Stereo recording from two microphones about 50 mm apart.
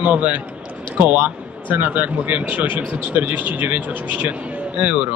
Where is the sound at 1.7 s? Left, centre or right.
Right.